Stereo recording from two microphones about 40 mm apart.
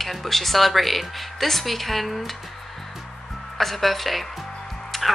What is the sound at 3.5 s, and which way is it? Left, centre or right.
Speech, centre.